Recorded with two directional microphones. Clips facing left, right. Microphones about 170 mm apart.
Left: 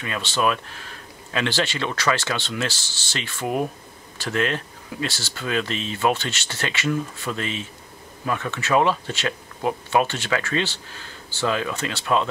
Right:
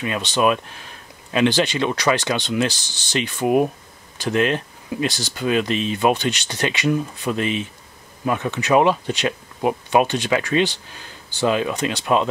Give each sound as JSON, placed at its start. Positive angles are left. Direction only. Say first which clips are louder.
{"t": 0.0, "sound": "speech", "louder": "right 4 dB", "side_deg": -20}